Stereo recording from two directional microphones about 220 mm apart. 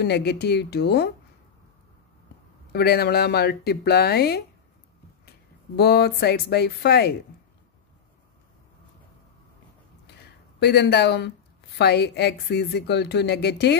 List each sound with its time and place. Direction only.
0.0 s speech: 50° left (ahead or behind)
2.7 s speech: 45° left (ahead or behind)
5.8 s speech: 45° left (ahead or behind)
10.6 s speech: 50° left (ahead or behind)